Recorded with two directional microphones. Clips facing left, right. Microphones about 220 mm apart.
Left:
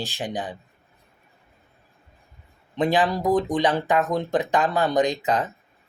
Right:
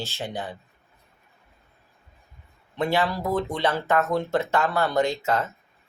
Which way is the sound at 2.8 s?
15° left (ahead or behind).